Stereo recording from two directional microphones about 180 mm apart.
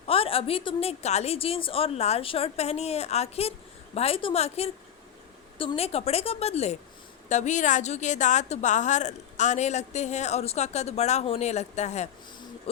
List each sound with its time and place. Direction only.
0.1 s a woman's voice: 30° left (ahead or behind)